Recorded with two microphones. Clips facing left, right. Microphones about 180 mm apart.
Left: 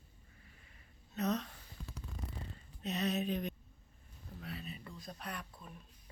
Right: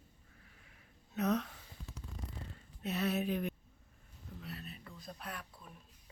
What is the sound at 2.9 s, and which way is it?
Speech, 15° left (ahead or behind).